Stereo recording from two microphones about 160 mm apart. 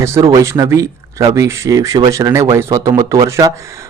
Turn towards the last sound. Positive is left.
turn(degrees=-20)  # may be behind; listen again after turning